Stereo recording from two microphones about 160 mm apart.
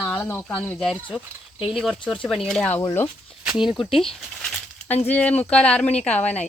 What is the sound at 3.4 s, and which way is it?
Speech, 5° right (ahead or behind).